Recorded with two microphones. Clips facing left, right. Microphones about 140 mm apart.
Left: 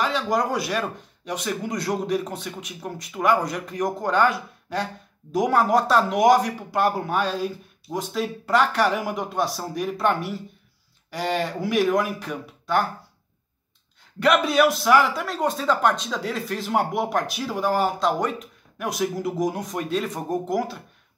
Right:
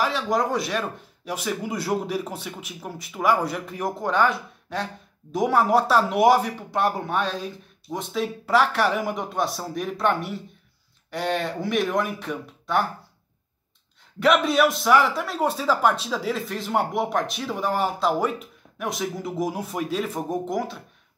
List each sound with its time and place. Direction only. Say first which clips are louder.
0.0 s a man's voice: even; centre (ahead or behind)
14.2 s a man's voice: even; centre (ahead or behind)